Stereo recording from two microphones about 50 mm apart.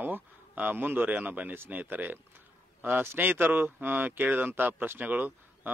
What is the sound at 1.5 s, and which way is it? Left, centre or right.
A man's voice, right.